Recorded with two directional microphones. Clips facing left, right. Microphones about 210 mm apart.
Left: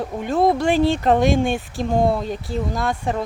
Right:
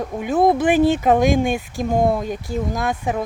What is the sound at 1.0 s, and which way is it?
Speech, 5° right (ahead or behind).